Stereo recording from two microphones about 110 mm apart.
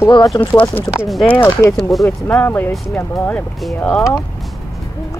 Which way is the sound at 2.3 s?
15° left (ahead or behind).